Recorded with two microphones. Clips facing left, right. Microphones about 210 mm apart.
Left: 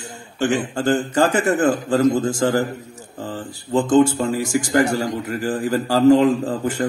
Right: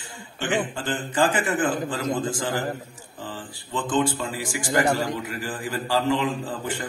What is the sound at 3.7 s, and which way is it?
Speech, 45° left (ahead or behind).